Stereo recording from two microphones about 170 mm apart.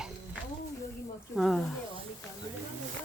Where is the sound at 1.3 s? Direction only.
Centre (ahead or behind).